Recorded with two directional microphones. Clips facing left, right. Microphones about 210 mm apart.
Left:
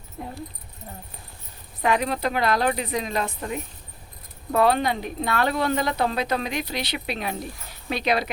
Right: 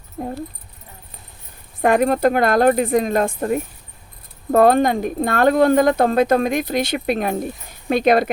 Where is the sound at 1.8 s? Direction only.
50° right (ahead or behind).